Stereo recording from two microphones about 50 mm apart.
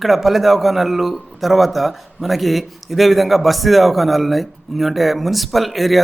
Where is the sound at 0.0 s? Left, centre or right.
Centre.